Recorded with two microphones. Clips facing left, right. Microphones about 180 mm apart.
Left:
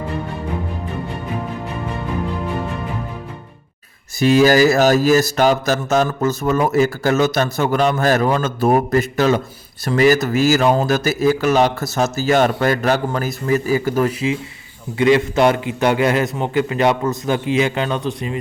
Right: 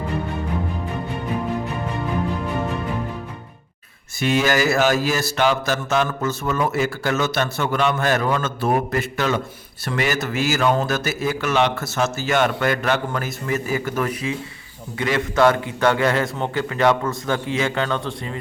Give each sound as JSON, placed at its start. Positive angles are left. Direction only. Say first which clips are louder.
{"t": 4.2, "sound": "a man's voice", "louder": "left 7 dB", "side_deg": 35}